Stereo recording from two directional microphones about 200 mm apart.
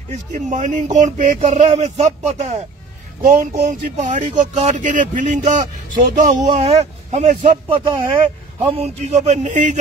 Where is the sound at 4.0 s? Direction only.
35° right (ahead or behind).